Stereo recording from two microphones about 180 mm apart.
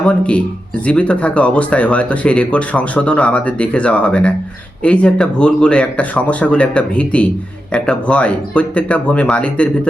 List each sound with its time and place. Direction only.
0.0 s speech: 5° left (ahead or behind)